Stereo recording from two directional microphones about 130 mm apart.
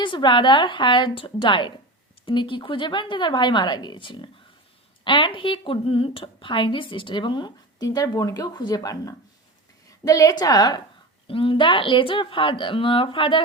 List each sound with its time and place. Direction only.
0.0 s a woman's voice: 40° left (ahead or behind)
11.3 s a woman's voice: 45° left (ahead or behind)